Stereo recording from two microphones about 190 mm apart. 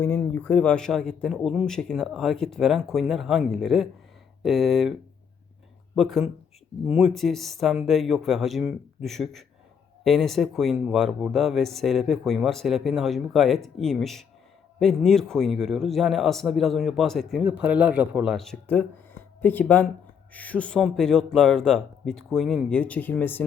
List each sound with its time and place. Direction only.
0.0 s speech: 10° left (ahead or behind)
6.0 s speech: centre (ahead or behind)